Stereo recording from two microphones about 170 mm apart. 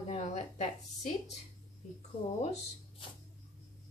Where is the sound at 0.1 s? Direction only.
40° left (ahead or behind).